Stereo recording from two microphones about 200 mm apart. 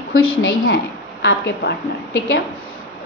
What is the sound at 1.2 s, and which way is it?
Speech, 55° left (ahead or behind).